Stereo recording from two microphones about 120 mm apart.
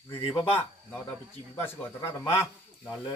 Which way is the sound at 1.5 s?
20° left (ahead or behind).